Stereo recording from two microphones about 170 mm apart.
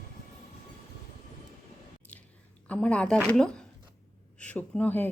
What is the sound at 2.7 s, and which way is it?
A woman's voice, 5° left (ahead or behind).